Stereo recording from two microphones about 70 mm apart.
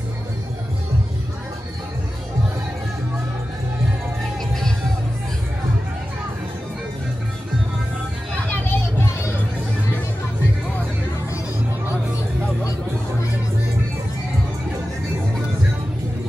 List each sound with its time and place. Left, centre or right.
8.6 s vehicle: left